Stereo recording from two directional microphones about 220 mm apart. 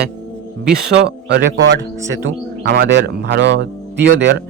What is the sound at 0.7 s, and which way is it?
Speech, 50° right (ahead or behind).